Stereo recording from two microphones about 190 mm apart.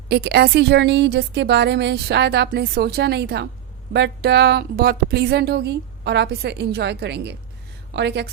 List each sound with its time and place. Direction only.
0.1 s a woman's voice: 60° right (ahead or behind)